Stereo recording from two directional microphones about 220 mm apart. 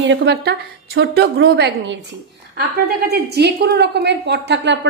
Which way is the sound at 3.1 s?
50° right (ahead or behind).